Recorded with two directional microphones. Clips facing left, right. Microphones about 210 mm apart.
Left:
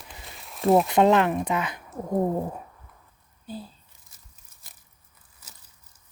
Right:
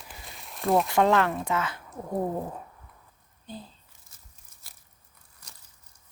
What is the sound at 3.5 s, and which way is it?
Speech, 5° left (ahead or behind).